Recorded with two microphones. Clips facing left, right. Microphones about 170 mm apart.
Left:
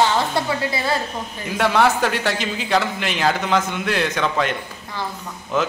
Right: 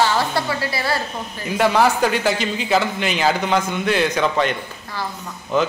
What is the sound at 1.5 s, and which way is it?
A man's voice, centre (ahead or behind).